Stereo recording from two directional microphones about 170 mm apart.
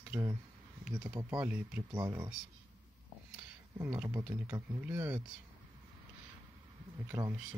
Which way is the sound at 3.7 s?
10° right (ahead or behind).